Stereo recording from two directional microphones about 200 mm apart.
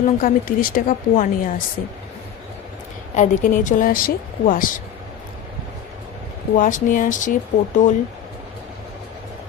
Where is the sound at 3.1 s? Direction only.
40° left (ahead or behind).